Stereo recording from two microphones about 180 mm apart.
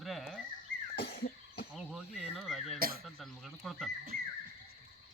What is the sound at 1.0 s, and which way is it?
Cough, 60° left (ahead or behind).